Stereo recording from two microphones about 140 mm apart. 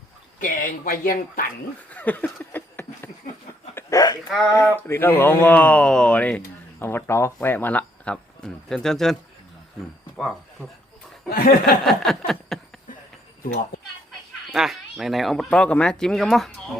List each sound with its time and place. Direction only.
0.3 s speech: 75° left (ahead or behind); by 1.5 s 90° left
1.9 s a sound: 10° left (ahead or behind)
4.5 s speech: 15° left (ahead or behind)
10.2 s speech: centre (ahead or behind)
11.3 s speech: 90° left
11.9 s speech: centre (ahead or behind)
14.5 s speech: 5° right (ahead or behind)